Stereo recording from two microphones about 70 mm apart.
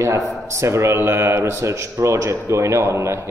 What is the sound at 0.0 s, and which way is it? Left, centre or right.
Speech, right.